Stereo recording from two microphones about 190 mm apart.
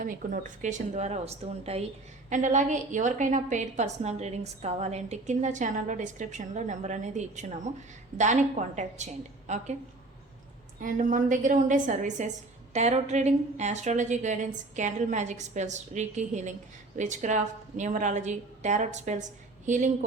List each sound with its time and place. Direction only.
0.0 s a woman's voice: 45° right (ahead or behind)
10.8 s a woman's voice: 45° right (ahead or behind)